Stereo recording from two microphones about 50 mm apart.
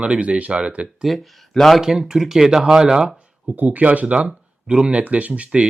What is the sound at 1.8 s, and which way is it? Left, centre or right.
Speech, centre.